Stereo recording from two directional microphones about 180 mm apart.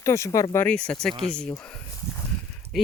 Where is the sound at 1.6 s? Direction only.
5° left (ahead or behind).